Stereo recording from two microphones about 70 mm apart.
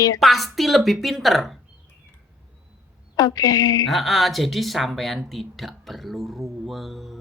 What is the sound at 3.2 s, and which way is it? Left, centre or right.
Speech, left.